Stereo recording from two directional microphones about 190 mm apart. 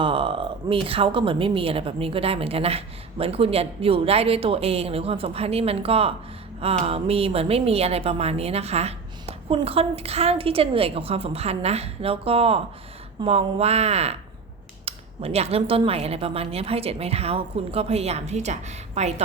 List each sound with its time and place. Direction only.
0.0 s speech: 25° right (ahead or behind)